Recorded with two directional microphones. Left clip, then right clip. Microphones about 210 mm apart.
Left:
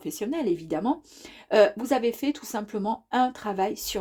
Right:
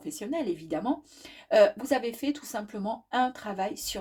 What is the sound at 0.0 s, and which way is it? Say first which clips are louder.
Speech: left 3 dB; 35° left (ahead or behind).